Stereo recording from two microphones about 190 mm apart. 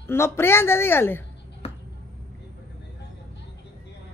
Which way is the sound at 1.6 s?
30° left (ahead or behind).